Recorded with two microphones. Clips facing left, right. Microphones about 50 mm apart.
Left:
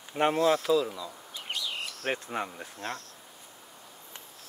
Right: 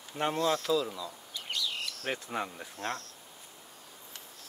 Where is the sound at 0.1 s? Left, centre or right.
Left.